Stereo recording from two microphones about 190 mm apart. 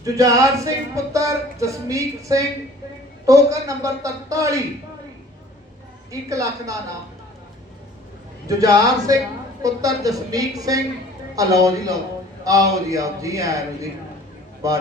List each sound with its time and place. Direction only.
0.0 s a man's voice: 15° right (ahead or behind)
6.1 s a man's voice: 15° right (ahead or behind)
8.4 s a man's voice: 15° right (ahead or behind)
14.6 s a man's voice: 15° right (ahead or behind)